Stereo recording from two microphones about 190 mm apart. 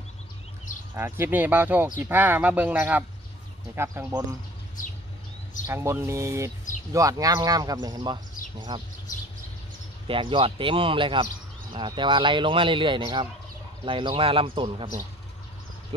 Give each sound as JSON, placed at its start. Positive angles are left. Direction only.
{"t": 0.9, "sound": "speech", "side_deg": -10}
{"t": 5.7, "sound": "speech", "side_deg": -15}
{"t": 10.0, "sound": "speech", "side_deg": -25}
{"t": 15.9, "sound": "speech", "side_deg": -25}